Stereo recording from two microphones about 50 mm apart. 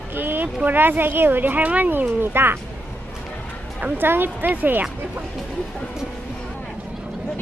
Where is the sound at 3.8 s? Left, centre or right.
Right.